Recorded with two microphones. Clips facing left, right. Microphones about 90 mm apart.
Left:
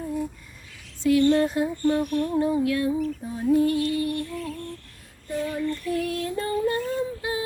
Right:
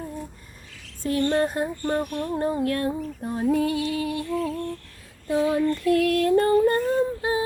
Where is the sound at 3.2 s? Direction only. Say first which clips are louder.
Left 1 dB; 75° right (ahead or behind); by 4.0 s 90° right.